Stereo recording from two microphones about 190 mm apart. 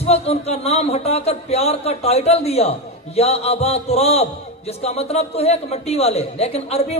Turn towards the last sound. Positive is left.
turn(degrees=35)  # may be behind; listen again after turning